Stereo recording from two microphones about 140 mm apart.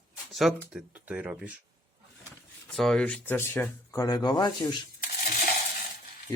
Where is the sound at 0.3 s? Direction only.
Centre (ahead or behind).